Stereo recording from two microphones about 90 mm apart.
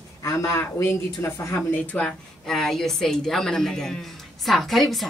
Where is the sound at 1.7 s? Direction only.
15° left (ahead or behind).